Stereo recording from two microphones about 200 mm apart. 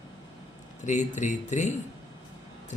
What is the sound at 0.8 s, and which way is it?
Speech, 35° left (ahead or behind).